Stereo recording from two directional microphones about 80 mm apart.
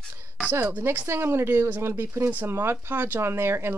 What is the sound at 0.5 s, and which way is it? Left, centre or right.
Speech, right.